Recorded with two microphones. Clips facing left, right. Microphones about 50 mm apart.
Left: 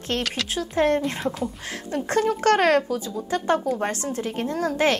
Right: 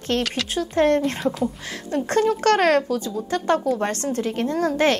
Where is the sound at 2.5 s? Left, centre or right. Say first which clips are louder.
Even; left.